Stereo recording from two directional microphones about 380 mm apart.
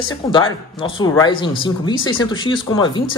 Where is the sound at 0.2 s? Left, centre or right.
Centre.